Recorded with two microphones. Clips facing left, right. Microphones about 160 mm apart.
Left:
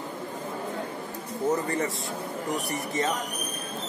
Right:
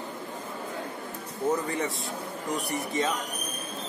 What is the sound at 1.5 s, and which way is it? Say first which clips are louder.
Speech: left 1 dB; centre (ahead or behind).